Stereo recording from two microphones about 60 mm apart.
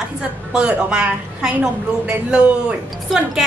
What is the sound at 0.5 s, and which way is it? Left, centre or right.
A man's voice, centre.